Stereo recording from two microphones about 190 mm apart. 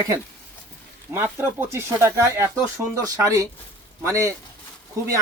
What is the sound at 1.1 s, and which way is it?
Speech, 15° right (ahead or behind).